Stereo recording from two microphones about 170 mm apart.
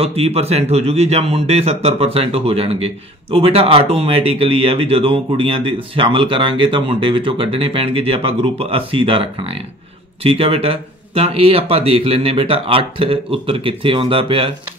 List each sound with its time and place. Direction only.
0.0 s speech: 35° right (ahead or behind)